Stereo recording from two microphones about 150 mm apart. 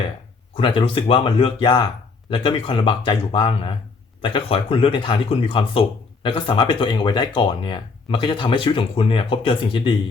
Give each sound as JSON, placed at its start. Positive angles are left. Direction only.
{"t": 0.5, "sound": "speech", "side_deg": 35}